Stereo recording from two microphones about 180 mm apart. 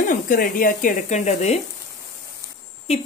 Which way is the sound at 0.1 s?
50° left (ahead or behind).